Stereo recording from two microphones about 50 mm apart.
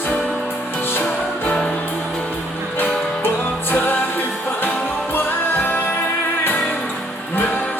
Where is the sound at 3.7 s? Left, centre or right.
Left.